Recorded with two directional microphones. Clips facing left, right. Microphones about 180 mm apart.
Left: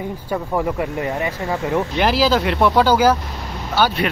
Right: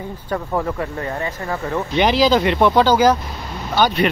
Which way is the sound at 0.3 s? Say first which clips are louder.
Even; 10° left (ahead or behind).